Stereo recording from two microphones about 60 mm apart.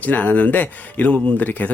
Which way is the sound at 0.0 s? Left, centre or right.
Left.